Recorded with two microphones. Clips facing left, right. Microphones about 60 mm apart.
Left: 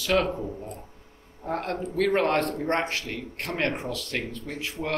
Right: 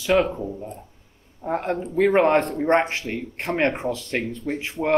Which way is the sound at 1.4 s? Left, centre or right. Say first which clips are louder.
Right 4 dB; centre.